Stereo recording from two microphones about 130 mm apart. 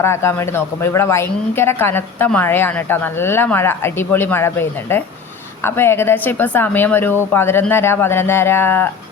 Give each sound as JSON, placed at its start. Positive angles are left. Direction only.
{"t": 0.0, "sound": "a woman's voice", "side_deg": 20}